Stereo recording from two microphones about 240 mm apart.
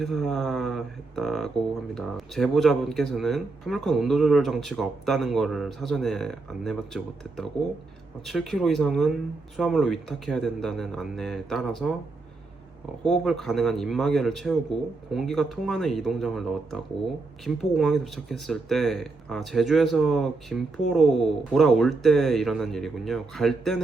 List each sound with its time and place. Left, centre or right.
0.0 s speech: centre
13.1 s speech: centre